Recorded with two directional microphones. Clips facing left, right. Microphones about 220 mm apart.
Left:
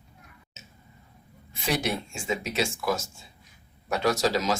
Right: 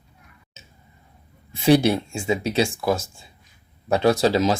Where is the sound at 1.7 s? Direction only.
30° right (ahead or behind).